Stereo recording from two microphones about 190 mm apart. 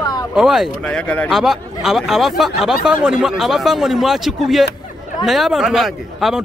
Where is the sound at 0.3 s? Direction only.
5° right (ahead or behind).